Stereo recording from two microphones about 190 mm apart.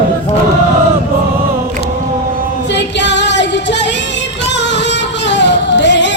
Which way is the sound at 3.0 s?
65° left (ahead or behind).